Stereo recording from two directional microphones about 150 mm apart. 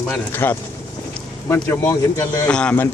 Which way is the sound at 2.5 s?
5° left (ahead or behind).